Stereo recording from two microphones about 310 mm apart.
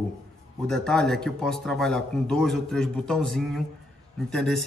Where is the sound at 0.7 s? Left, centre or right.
Centre.